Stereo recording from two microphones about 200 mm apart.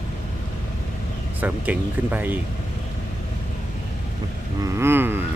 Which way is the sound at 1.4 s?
10° right (ahead or behind).